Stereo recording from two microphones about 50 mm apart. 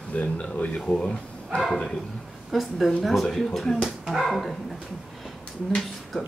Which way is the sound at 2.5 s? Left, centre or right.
Centre.